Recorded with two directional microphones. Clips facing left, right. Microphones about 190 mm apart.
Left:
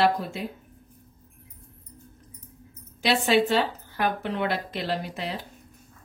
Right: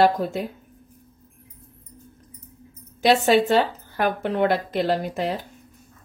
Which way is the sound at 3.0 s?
45° right (ahead or behind).